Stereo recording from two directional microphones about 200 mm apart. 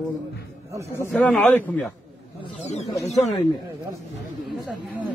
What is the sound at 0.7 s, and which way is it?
Speech, 15° right (ahead or behind).